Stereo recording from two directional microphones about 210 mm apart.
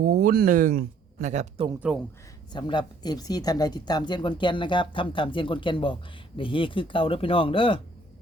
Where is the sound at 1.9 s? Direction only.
Centre (ahead or behind).